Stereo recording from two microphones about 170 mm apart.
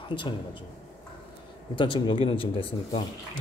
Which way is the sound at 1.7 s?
30° left (ahead or behind).